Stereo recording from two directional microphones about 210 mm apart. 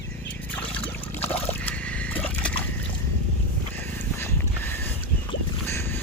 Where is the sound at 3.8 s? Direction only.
10° left (ahead or behind).